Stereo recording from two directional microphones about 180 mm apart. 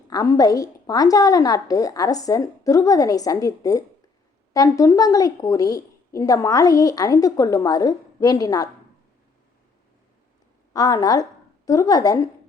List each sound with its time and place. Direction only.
0.1 s a woman's voice: 20° left (ahead or behind)
10.8 s a woman's voice: 20° left (ahead or behind)